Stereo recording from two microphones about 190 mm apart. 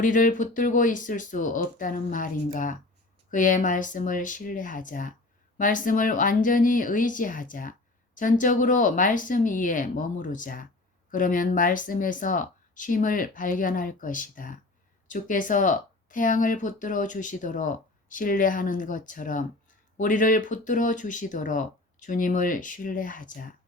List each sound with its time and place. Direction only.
0.0 s speech: 45° left (ahead or behind)